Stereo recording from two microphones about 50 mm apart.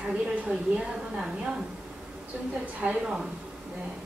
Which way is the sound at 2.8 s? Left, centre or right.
Right.